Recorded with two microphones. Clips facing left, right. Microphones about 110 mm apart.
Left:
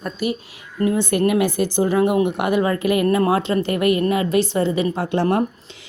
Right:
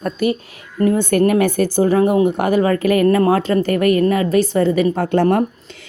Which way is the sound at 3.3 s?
45° right (ahead or behind).